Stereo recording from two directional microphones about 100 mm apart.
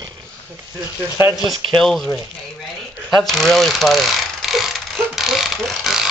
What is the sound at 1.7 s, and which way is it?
Speech, 5° left (ahead or behind).